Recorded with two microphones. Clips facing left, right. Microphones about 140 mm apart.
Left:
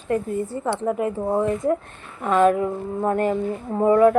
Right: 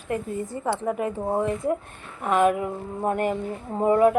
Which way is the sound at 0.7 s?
25° left (ahead or behind).